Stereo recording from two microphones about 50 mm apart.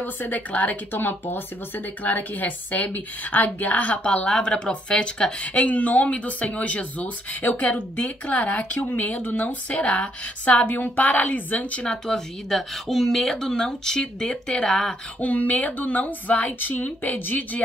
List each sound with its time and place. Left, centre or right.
0.0 s a woman's voice: left
0.9 s a woman's voice: left
11.8 s speech: centre
15.1 s a woman's voice: left